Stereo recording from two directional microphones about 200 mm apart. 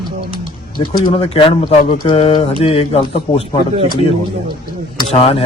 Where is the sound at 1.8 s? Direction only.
45° left (ahead or behind).